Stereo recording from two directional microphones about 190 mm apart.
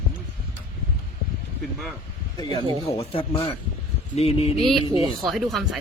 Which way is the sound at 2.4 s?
25° left (ahead or behind).